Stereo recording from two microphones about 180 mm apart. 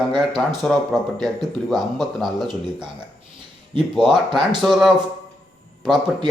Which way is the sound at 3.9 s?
Centre (ahead or behind).